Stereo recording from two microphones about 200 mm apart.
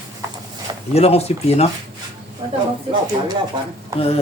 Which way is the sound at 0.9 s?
30° left (ahead or behind).